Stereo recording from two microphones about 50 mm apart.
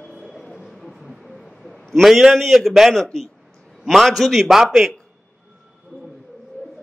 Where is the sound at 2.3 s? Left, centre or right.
Centre.